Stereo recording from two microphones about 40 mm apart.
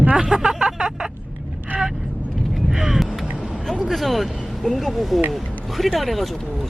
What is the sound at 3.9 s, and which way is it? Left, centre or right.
Speech, centre.